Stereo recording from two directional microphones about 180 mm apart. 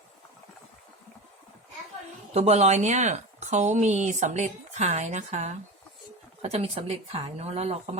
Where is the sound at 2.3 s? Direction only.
35° right (ahead or behind).